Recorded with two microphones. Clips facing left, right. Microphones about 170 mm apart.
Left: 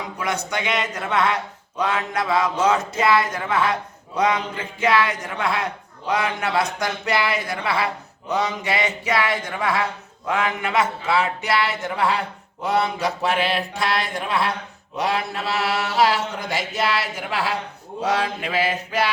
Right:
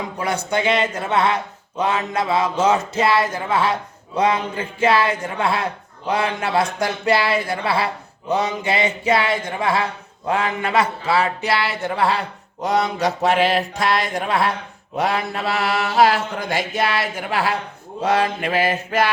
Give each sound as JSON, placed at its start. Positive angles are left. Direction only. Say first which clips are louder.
{"t": 0.2, "sound": "music", "louder": "right 4 dB", "side_deg": -30}
{"t": 1.8, "sound": "speech", "louder": "right 2 dB", "side_deg": -25}
{"t": 10.2, "sound": "music", "louder": "right 2 dB", "side_deg": -35}
{"t": 12.6, "sound": "mantra", "louder": "right 2 dB", "side_deg": -40}